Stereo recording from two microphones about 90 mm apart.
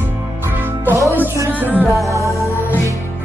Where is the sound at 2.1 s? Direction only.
35° right (ahead or behind).